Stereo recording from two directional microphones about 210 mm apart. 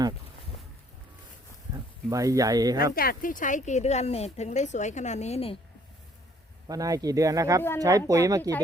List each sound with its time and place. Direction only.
1.7 s speech: 15° right (ahead or behind)
2.9 s speech: 45° left (ahead or behind); by 5.5 s 30° left (ahead or behind)
6.7 s speech: 15° right (ahead or behind)
8.4 s speech: 10° left (ahead or behind)